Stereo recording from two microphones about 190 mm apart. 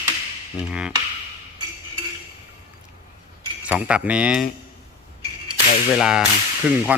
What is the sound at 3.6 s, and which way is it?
Speech, 5° right (ahead or behind).